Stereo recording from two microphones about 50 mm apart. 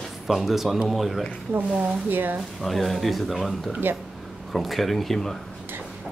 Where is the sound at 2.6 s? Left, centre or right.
Centre.